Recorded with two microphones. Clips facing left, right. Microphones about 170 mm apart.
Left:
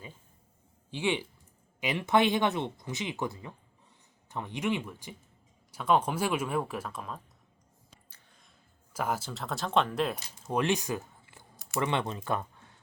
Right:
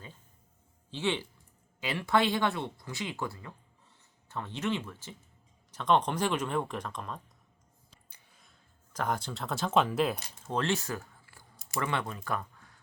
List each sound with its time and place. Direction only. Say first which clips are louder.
0.9 s speech: left 1 dB; 15° left (ahead or behind)
8.1 s a sound: left 1 dB; 5° right (ahead or behind)
8.9 s speech: even; 5° left (ahead or behind)
10.4 s speech: left 3 dB; 15° left (ahead or behind)